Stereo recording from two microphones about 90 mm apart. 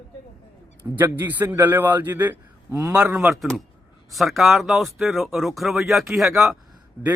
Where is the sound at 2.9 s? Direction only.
15° right (ahead or behind).